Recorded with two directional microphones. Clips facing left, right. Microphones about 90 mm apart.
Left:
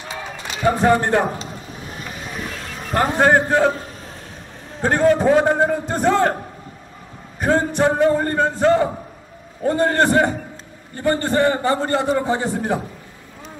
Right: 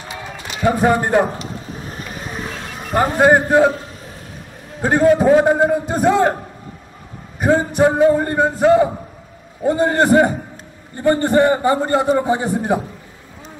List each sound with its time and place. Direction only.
0.7 s a man's voice: 10° right (ahead or behind)
1.9 s boat: 40° right (ahead or behind)
2.9 s a man's voice: 10° right (ahead or behind)
4.8 s a man's voice: 10° right (ahead or behind)
7.3 s a man's voice: 10° right (ahead or behind)